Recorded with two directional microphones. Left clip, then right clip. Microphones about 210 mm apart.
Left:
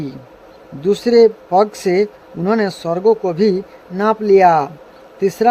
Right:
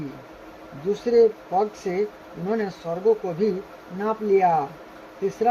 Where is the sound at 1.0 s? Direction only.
35° left (ahead or behind).